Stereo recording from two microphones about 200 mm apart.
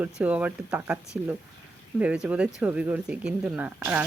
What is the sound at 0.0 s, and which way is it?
Speech, 5° right (ahead or behind).